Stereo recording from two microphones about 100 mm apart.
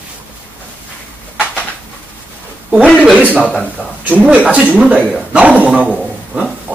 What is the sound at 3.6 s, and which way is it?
Speech, 15° right (ahead or behind).